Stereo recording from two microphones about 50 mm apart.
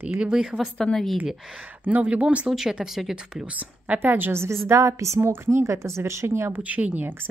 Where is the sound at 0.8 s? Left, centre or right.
Centre.